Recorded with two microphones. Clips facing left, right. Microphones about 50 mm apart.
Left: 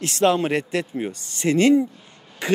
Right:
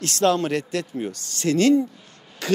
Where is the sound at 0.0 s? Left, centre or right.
Centre.